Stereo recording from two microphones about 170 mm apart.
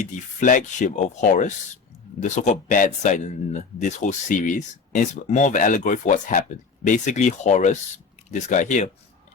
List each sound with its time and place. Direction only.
0.0 s a man's voice: 50° left (ahead or behind)